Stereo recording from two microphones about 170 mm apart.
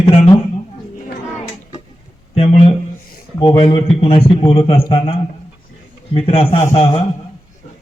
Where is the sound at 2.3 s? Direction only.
35° left (ahead or behind).